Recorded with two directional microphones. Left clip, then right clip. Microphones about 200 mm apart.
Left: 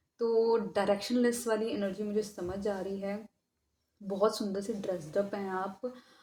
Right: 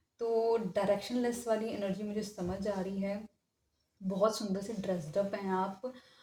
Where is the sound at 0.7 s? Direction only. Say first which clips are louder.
Left 2 dB; 30° left (ahead or behind).